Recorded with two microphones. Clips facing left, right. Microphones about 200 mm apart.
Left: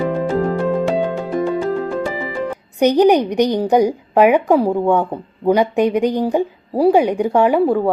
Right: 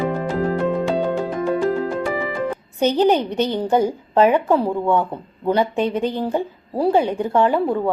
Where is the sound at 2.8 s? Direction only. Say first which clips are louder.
Left 5 dB; 15° left (ahead or behind).